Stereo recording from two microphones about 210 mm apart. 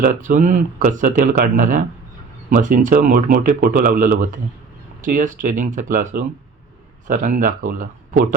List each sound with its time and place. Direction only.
0.0 s speech: 40° right (ahead or behind)